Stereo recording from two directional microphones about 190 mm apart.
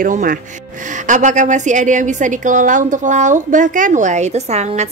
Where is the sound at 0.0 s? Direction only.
45° right (ahead or behind).